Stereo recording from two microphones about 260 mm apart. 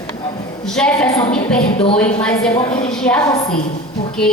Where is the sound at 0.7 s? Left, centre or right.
Centre.